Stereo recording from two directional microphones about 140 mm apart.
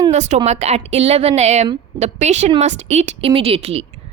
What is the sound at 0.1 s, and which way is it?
A woman's voice, 55° right (ahead or behind).